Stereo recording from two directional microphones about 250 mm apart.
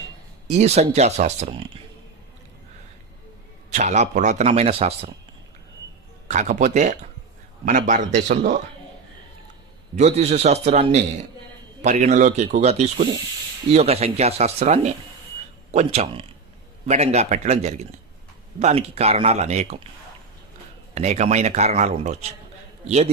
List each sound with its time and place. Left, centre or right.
0.4 s speech: right
3.7 s speech: right
6.2 s speech: right
9.9 s speech: right
20.9 s speech: right